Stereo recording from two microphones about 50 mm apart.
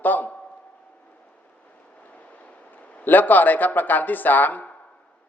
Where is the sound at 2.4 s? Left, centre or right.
Left.